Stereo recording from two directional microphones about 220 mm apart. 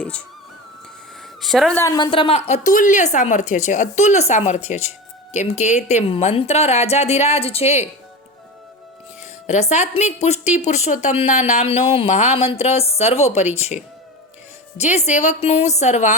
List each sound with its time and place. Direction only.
1.4 s a woman's voice: centre (ahead or behind)
1.8 s a woman's voice: 20° left (ahead or behind)
9.2 s a woman's voice: 30° left (ahead or behind)